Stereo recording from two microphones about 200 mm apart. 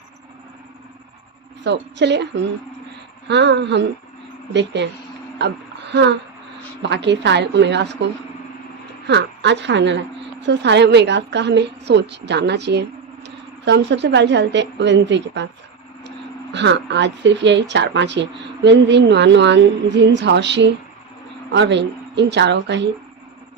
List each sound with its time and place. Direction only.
1.6 s speech: 60° right (ahead or behind)
5.9 s a woman's voice: 60° right (ahead or behind)